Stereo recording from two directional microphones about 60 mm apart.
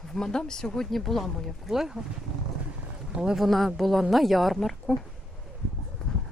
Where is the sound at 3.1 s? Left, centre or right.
Centre.